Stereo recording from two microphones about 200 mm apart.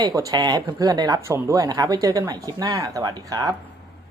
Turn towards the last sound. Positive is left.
turn(degrees=-20)  # may be behind; listen again after turning